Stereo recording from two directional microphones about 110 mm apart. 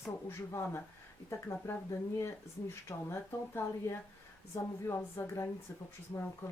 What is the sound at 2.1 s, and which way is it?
Speech, 25° left (ahead or behind).